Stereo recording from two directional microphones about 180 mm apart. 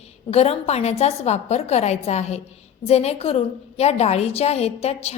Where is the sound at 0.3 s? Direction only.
35° left (ahead or behind).